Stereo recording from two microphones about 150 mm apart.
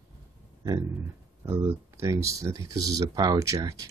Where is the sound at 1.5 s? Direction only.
15° right (ahead or behind).